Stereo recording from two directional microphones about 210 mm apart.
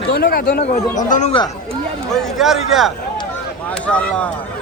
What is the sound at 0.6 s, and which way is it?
Speech, 35° left (ahead or behind).